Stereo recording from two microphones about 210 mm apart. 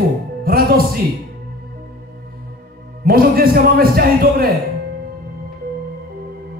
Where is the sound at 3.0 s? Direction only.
45° right (ahead or behind).